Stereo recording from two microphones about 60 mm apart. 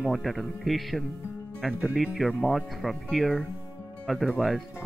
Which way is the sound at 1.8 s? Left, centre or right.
Centre.